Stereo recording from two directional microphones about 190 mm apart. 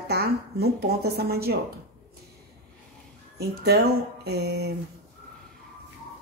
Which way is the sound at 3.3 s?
55° right (ahead or behind).